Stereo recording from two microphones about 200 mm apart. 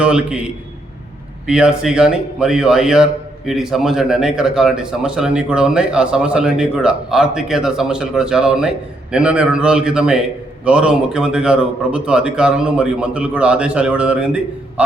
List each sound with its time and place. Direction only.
0.0 s a man's voice: 5° right (ahead or behind)